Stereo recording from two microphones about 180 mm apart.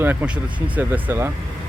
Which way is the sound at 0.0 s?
10° right (ahead or behind).